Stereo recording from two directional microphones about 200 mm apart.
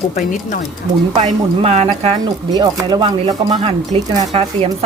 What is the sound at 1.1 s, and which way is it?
Speech, 30° right (ahead or behind).